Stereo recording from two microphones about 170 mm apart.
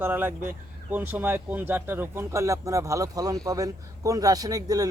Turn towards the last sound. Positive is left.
turn(degrees=-20)  # may be behind; listen again after turning